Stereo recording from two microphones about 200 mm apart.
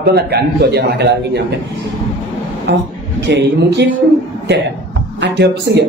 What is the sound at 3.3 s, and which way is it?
Speech, 60° right (ahead or behind).